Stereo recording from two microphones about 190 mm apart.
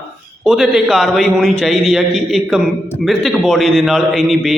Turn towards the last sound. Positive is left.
turn(degrees=0)  # may be behind; listen again after turning